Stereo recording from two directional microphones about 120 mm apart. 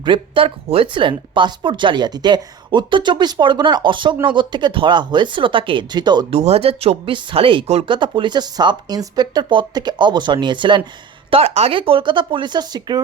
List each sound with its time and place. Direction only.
0.0 s speech: 45° right (ahead or behind)
6.3 s speech: 55° right (ahead or behind)
7.9 s speech: 40° right (ahead or behind)
11.3 s speech: 55° right (ahead or behind); by 13.0 s 35° right (ahead or behind)